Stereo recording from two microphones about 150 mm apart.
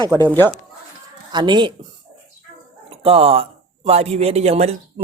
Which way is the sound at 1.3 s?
30° right (ahead or behind).